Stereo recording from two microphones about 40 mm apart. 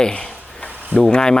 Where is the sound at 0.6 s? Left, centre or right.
Left.